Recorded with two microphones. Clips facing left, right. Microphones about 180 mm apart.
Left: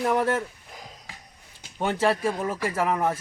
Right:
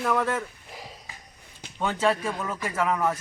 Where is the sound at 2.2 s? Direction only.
30° left (ahead or behind).